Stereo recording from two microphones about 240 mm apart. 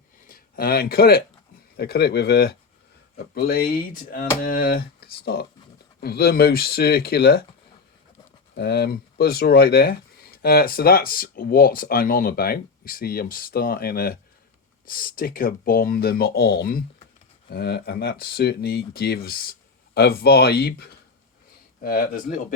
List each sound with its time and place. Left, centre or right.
0.3 s speech: left
8.5 s speech: left